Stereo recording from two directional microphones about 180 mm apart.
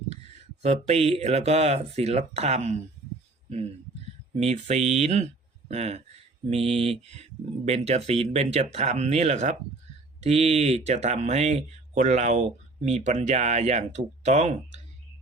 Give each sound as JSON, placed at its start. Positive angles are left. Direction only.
{"t": 0.6, "sound": "speech", "side_deg": -35}
{"t": 4.4, "sound": "speech", "side_deg": -40}